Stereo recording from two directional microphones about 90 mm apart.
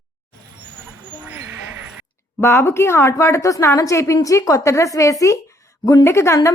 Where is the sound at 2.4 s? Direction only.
25° left (ahead or behind).